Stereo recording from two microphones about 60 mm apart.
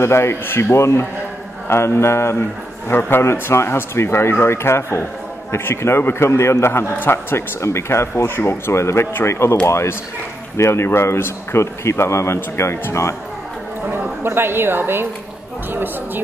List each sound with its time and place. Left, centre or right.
0.0 s a man's voice: left
13.8 s a woman's voice: right